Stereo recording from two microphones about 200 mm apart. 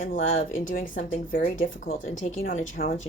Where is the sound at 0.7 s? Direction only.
40° left (ahead or behind).